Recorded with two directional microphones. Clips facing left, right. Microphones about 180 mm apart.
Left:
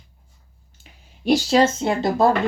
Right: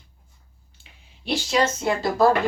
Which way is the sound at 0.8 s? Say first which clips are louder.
Left 13 dB; 40° left (ahead or behind).